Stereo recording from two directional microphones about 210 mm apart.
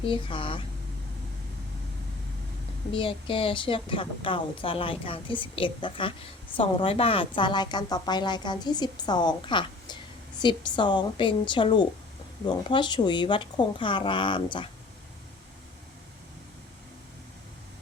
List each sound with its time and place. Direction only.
0.0 s a woman's voice: 25° left (ahead or behind)
2.9 s a woman's voice: 25° left (ahead or behind)